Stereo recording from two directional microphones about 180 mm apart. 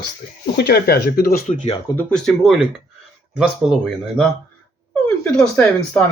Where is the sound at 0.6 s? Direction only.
60° left (ahead or behind).